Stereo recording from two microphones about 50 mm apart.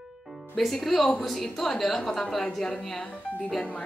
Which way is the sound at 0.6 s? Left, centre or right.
Centre.